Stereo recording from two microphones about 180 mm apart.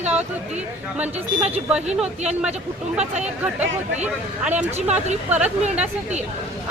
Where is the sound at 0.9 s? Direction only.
5° right (ahead or behind).